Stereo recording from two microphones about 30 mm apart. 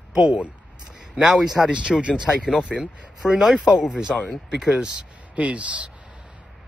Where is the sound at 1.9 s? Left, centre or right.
Centre.